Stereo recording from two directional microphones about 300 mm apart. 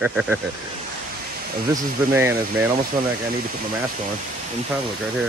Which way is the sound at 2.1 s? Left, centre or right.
Centre.